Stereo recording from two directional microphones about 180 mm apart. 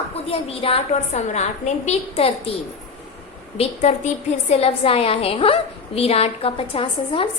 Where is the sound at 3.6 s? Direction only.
40° left (ahead or behind).